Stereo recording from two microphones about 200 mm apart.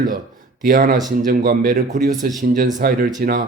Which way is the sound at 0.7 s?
45° right (ahead or behind).